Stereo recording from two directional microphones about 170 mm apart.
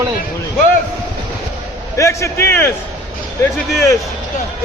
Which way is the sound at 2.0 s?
15° left (ahead or behind).